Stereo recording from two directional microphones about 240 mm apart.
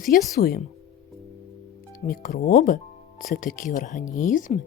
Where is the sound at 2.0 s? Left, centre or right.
Left.